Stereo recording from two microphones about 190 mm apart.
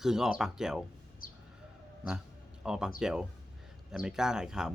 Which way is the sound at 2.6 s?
5° right (ahead or behind).